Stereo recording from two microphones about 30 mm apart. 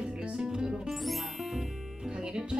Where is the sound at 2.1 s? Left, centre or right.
Right.